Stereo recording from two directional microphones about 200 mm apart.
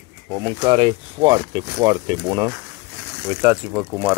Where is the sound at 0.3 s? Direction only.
20° right (ahead or behind).